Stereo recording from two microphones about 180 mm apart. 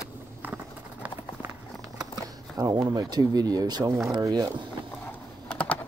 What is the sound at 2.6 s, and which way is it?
Speech, 20° right (ahead or behind).